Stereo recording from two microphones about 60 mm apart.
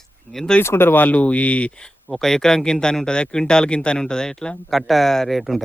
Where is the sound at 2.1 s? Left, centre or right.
Centre.